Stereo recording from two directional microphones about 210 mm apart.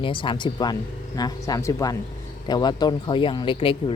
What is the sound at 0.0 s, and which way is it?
Speech, 25° left (ahead or behind).